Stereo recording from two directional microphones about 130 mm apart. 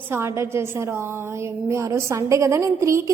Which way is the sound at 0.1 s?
20° right (ahead or behind).